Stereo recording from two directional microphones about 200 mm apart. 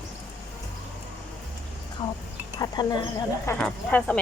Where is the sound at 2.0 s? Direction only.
25° left (ahead or behind).